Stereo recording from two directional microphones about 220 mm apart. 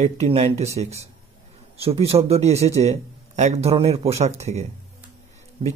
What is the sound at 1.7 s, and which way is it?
Speech, 25° right (ahead or behind).